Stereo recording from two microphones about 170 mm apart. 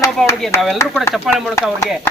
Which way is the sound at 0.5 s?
15° left (ahead or behind).